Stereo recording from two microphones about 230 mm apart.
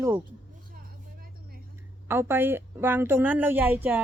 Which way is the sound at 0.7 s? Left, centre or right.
Right.